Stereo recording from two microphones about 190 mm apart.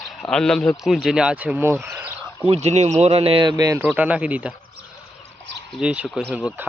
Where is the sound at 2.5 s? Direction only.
35° right (ahead or behind); by 3.8 s 20° right (ahead or behind).